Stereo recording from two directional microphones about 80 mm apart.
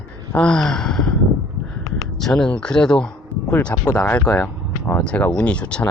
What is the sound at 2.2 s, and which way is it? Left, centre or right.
Speech, centre.